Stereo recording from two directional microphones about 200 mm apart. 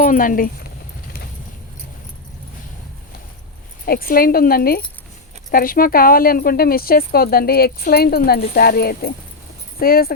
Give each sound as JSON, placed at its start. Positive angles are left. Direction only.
{"t": 0.0, "sound": "speech", "side_deg": 45}
{"t": 3.8, "sound": "speech", "side_deg": 45}